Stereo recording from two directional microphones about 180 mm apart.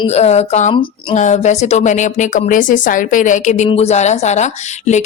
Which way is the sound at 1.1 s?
40° left (ahead or behind).